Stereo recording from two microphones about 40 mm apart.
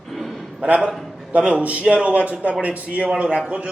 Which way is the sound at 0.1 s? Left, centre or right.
Centre.